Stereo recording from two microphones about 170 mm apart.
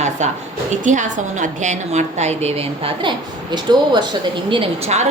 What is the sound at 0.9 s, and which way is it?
A woman's voice, 45° right (ahead or behind).